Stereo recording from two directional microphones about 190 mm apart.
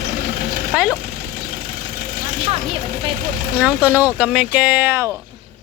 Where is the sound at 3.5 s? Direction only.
10° right (ahead or behind).